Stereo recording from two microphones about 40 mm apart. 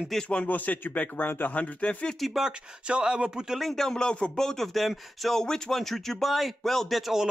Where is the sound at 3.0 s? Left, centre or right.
Right.